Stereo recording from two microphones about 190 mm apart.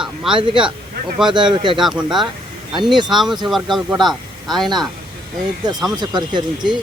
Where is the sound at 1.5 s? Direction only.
25° right (ahead or behind).